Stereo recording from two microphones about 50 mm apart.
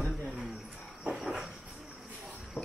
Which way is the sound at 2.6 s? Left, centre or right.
Left.